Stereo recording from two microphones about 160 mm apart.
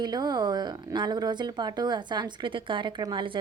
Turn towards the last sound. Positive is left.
turn(degrees=-30)  # may be behind; listen again after turning